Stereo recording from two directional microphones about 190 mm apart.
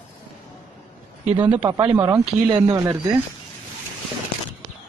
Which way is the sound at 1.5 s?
25° right (ahead or behind).